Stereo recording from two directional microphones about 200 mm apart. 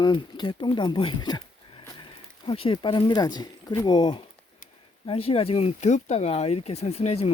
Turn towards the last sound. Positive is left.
turn(degrees=30)  # may be behind; listen again after turning